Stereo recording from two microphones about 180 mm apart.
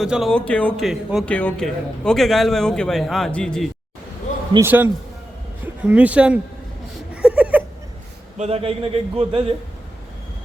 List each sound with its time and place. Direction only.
0.0 s speech: centre (ahead or behind)
4.6 s speech: 10° right (ahead or behind)
7.1 s a sound: 5° right (ahead or behind)
8.4 s speech: 35° right (ahead or behind)